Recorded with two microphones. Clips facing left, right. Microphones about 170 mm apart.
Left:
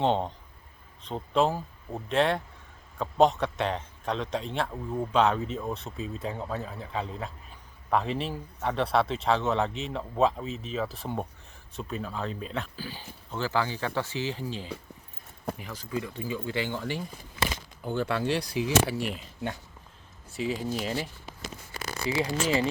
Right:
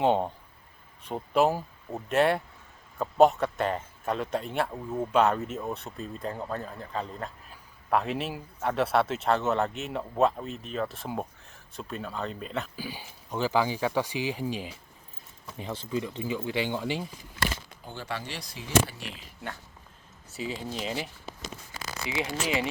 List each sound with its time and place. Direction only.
0.0 s a man's voice: 10° right (ahead or behind)
12.7 s speech: 10° right (ahead or behind)
15.5 s speech: 25° right (ahead or behind)
17.8 s speech: 55° left (ahead or behind)
20.4 s a man's voice: 5° left (ahead or behind)
22.2 s speech: 10° right (ahead or behind)